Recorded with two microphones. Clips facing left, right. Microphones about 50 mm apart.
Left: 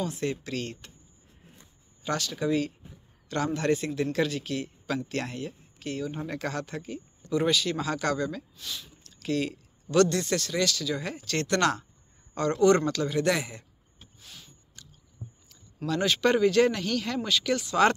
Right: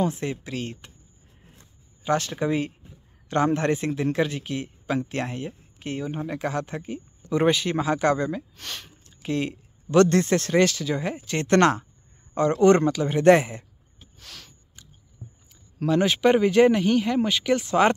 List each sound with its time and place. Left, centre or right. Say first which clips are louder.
0.0 s speech: right 5 dB; right
0.3 s speech: right 1 dB; centre
2.0 s speech: right 4 dB; right
8.5 s speech: right 2 dB; right
9.0 s speech: right 2 dB; centre
11.4 s speech: right 7 dB; right
12.8 s speech: right 5 dB; centre
13.1 s speech: right 14 dB; right
14.1 s a sound: right 5 dB; right
15.9 s speech: right 5 dB; right